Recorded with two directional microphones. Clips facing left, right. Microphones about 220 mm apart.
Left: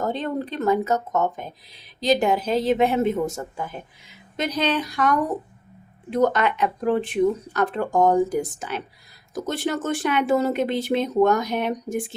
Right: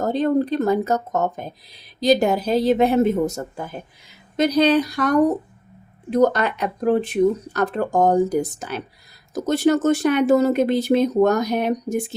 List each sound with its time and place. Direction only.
0.0 s speech: 40° right (ahead or behind)